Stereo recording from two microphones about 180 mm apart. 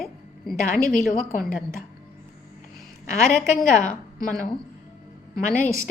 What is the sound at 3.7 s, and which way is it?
Speech, 45° left (ahead or behind).